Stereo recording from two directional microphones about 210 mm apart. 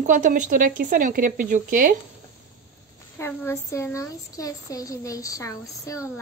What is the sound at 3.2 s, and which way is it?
A woman's voice, 10° left (ahead or behind).